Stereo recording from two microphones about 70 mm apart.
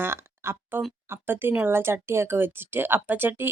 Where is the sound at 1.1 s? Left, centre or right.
Right.